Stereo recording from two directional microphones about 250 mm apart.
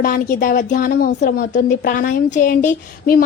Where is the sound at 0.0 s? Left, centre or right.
Left.